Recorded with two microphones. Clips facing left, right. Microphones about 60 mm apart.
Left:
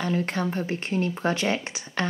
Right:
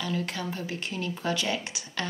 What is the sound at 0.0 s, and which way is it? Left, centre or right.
Speech, left.